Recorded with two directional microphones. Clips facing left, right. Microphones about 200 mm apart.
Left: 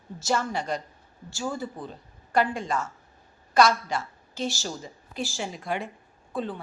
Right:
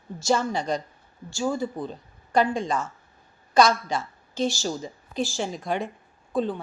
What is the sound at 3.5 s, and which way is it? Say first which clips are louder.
A woman's voice: right 1 dB; 20° right (ahead or behind).